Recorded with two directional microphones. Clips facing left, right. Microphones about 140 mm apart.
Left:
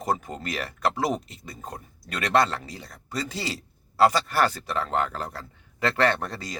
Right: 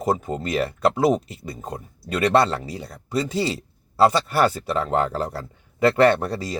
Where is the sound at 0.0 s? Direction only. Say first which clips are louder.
Right 5 dB; 25° right (ahead or behind).